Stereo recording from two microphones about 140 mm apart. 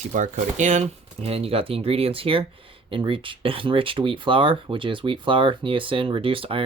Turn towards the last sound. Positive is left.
turn(degrees=-40)  # may be behind; listen again after turning